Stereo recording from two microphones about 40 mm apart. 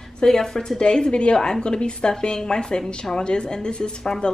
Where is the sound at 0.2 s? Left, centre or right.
Centre.